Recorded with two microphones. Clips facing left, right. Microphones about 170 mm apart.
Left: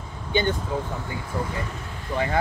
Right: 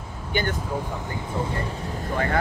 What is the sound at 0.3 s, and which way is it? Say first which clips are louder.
Speech: left 3 dB; 20° left (ahead or behind).